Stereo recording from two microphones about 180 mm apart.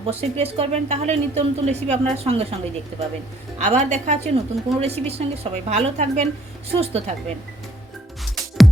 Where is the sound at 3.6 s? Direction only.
40° right (ahead or behind).